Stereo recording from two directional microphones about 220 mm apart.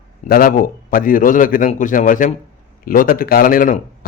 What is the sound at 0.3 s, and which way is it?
A man's voice, 40° left (ahead or behind).